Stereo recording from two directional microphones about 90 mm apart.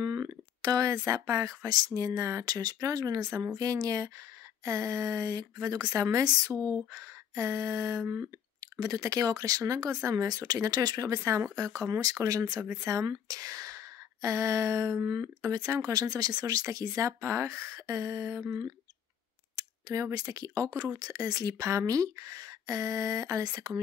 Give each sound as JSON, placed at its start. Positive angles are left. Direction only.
{"t": 0.0, "sound": "speech", "side_deg": -45}
{"t": 6.9, "sound": "a sound", "side_deg": -40}
{"t": 8.0, "sound": "speech", "side_deg": -20}
{"t": 8.7, "sound": "speech", "side_deg": -45}
{"t": 19.9, "sound": "speech", "side_deg": -35}